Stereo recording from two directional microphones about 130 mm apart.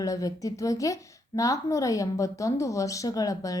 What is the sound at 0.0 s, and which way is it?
A woman's voice, 25° left (ahead or behind).